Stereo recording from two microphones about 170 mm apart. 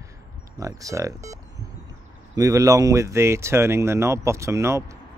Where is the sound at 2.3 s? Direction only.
20° right (ahead or behind).